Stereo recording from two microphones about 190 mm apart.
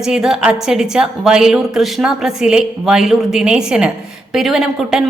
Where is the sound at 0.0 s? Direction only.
5° right (ahead or behind).